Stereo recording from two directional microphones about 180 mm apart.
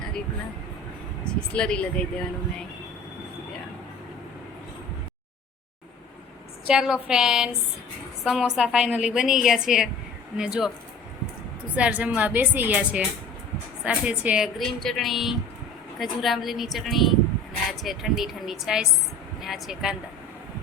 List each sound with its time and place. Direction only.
1.2 s a woman's voice: 5° left (ahead or behind)
6.7 s a woman's voice: 5° right (ahead or behind)
11.7 s a woman's voice: 5° right (ahead or behind)